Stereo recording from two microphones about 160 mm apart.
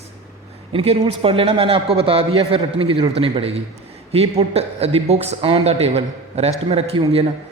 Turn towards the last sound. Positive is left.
turn(degrees=-40)  # may be behind; listen again after turning